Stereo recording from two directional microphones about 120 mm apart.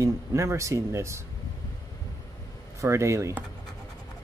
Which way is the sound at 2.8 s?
25° right (ahead or behind).